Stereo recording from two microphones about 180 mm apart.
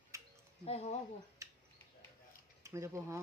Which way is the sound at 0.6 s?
35° left (ahead or behind).